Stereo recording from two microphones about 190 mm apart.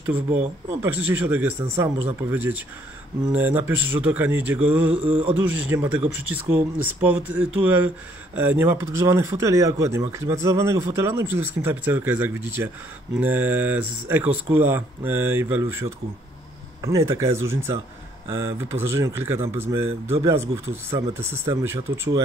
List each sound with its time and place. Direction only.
0.8 s speech: 10° right (ahead or behind)